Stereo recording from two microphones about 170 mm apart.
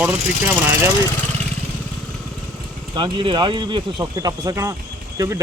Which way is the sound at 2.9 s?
25° right (ahead or behind).